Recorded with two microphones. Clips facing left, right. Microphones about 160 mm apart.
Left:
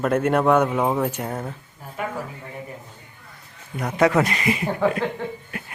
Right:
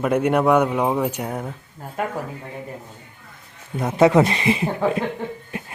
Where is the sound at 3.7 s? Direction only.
25° right (ahead or behind).